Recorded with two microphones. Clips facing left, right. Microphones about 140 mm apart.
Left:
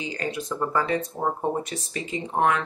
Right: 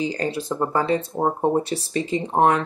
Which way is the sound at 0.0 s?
35° right (ahead or behind).